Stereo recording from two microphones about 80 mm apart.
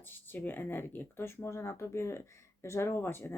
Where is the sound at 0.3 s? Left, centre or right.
Left.